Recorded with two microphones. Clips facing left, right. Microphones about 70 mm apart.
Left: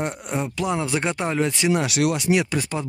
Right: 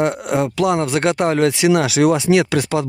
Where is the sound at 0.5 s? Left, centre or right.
Right.